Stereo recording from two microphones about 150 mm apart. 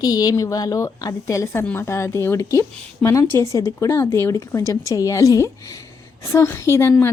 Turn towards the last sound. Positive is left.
turn(degrees=15)  # may be behind; listen again after turning